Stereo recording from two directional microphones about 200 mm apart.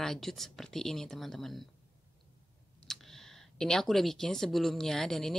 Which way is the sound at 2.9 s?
Centre (ahead or behind).